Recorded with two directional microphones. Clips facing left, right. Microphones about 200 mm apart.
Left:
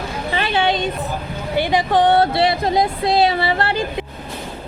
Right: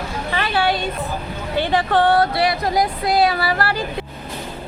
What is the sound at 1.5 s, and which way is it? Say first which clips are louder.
Speech: left 1 dB; 15° left (ahead or behind).